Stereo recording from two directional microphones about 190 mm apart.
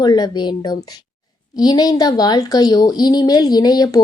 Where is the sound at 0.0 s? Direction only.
20° left (ahead or behind).